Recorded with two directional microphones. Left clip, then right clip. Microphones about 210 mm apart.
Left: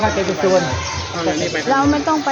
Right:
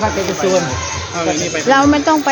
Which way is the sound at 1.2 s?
50° right (ahead or behind).